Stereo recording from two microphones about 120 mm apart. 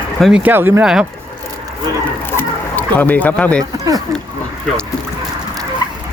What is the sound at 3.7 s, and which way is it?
Speech, 30° right (ahead or behind).